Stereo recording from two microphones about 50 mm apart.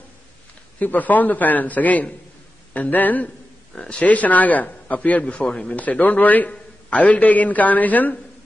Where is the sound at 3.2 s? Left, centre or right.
Centre.